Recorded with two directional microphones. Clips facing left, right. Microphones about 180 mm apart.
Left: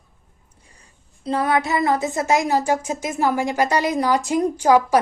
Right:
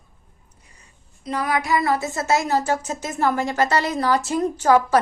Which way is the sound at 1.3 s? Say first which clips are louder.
Left 2 dB; 30° left (ahead or behind).